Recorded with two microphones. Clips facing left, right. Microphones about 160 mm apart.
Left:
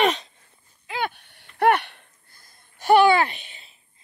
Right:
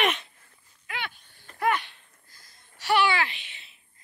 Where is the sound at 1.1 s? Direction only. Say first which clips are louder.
Left 11 dB; 70° left (ahead or behind).